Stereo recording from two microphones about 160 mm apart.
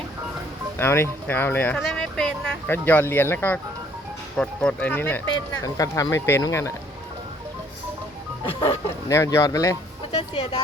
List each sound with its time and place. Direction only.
0.8 s speech: 15° left (ahead or behind)
1.8 s speech: centre (ahead or behind); by 6.7 s 20° left (ahead or behind)
8.4 s speech: 35° left (ahead or behind)
9.0 s speech: 20° left (ahead or behind)
10.1 s speech: 40° left (ahead or behind)